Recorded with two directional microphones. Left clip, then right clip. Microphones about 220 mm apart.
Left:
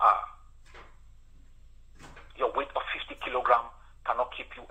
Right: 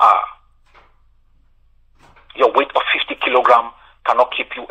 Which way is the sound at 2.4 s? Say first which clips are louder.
Right 15 dB; 45° right (ahead or behind).